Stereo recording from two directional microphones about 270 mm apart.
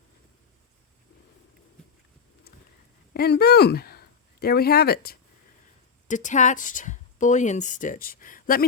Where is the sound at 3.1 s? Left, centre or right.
Left.